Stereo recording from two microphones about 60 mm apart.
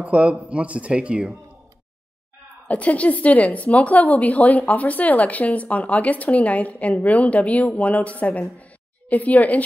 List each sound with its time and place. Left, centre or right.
0.0 s speech: right
2.7 s a woman's voice: left